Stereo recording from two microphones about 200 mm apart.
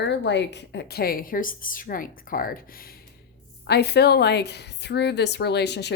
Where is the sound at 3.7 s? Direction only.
55° left (ahead or behind).